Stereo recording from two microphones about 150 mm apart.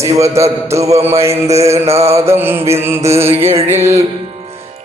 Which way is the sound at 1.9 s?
45° right (ahead or behind).